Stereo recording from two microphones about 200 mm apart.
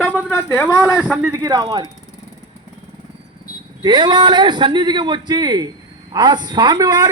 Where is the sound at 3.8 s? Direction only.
20° right (ahead or behind).